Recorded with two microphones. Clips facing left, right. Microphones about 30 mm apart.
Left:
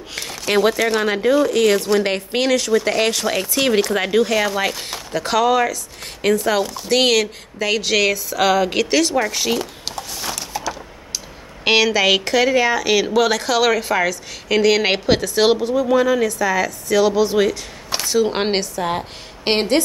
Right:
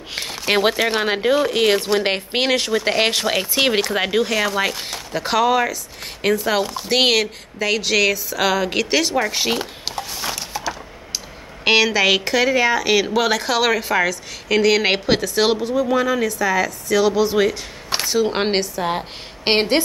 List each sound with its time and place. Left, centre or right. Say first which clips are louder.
0.1 s speech: even; centre
3.8 s speech: left 2 dB; centre
7.5 s speech: even; centre
9.3 s speech: even; right
9.9 s a sound: right 1 dB; centre
11.6 s speech: even; centre